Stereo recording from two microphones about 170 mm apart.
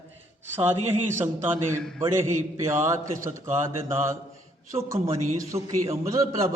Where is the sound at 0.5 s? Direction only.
15° right (ahead or behind).